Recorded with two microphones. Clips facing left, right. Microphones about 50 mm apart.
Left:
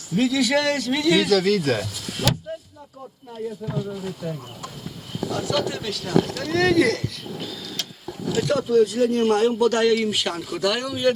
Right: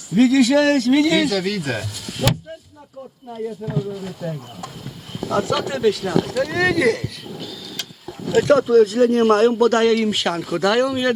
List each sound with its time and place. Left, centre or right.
0.2 s a man's voice: right
1.3 s speech: centre
3.3 s speech: centre
5.3 s speech: right; by 7.1 s centre
8.3 s a man's voice: right